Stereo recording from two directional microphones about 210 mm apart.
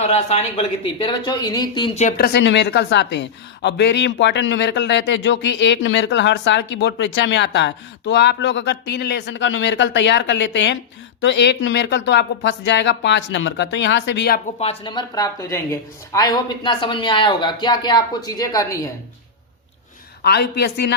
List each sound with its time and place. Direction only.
0.0 s a woman's voice: 30° left (ahead or behind)
2.0 s a woman's voice: 40° left (ahead or behind)
14.6 s a woman's voice: 25° left (ahead or behind)
20.2 s a woman's voice: 50° left (ahead or behind)